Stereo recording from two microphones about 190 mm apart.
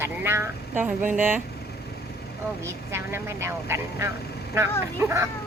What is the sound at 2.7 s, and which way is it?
Speech, 15° right (ahead or behind).